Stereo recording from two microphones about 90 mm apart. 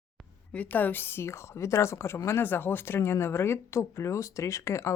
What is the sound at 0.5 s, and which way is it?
A woman's voice, 20° left (ahead or behind).